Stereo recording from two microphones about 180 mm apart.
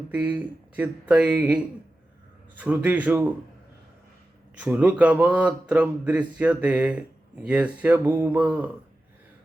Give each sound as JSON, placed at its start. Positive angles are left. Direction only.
{"t": 0.1, "sound": "speech", "side_deg": -10}
{"t": 4.6, "sound": "speech", "side_deg": -10}